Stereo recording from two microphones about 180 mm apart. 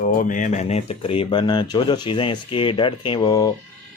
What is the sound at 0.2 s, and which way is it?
Speech, 45° left (ahead or behind).